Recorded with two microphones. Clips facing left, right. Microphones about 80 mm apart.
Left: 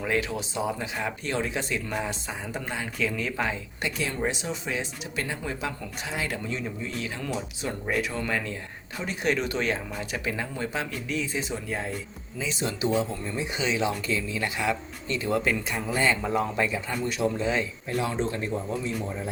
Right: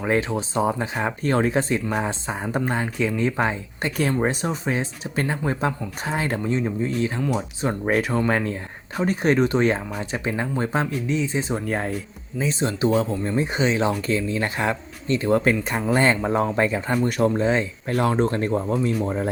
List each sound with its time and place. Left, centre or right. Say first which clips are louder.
0.0 s speech: right 5 dB; right
3.0 s speech: right 5 dB; right
11.0 s speech: right 6 dB; right
11.5 s speech: right 6 dB; right
12.4 s speech: right 6 dB; right
12.9 s speech: right 6 dB; right
16.2 s speech: right 5 dB; right
17.8 s speech: right 10 dB; right